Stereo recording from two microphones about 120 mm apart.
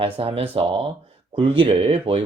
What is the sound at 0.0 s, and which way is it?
Speech, 55° right (ahead or behind).